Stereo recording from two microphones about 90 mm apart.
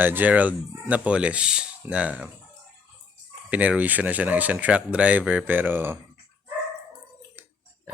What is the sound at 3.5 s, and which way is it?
Speech, 15° right (ahead or behind).